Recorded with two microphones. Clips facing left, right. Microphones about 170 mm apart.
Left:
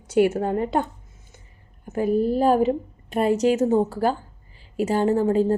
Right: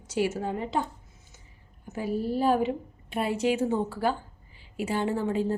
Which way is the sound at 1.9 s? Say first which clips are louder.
Left 8 dB; 50° left (ahead or behind).